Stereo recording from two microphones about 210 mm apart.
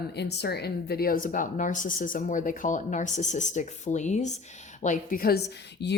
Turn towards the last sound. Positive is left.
turn(degrees=55)  # may be behind; listen again after turning